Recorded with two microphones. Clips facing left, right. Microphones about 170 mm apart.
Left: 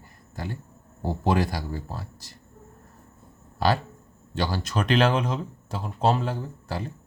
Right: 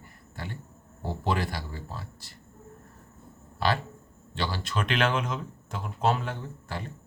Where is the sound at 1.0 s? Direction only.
40° left (ahead or behind).